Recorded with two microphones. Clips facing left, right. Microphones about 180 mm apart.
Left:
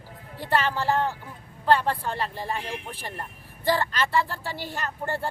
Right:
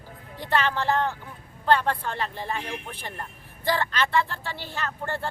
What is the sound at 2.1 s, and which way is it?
Speech, 35° left (ahead or behind).